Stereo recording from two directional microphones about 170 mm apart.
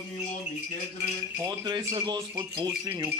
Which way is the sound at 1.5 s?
25° right (ahead or behind).